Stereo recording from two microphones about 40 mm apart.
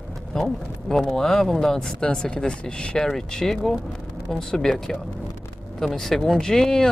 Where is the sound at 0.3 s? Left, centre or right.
Centre.